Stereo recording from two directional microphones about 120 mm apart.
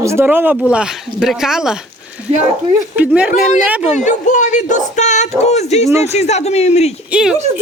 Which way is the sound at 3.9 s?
90° left.